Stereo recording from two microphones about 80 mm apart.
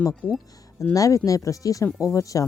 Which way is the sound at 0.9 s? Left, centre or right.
Left.